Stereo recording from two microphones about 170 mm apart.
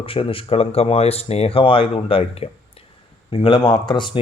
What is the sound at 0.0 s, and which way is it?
Speech, 35° left (ahead or behind).